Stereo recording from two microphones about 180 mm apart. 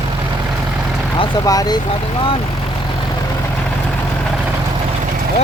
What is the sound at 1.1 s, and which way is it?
Speech, 20° left (ahead or behind).